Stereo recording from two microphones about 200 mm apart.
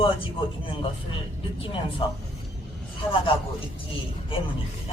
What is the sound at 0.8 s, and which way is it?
Speech, 25° left (ahead or behind).